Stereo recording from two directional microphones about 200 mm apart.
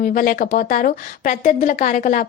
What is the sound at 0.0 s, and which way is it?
A woman's voice, 45° left (ahead or behind).